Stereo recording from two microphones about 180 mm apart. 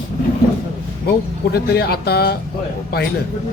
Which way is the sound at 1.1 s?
60° left (ahead or behind).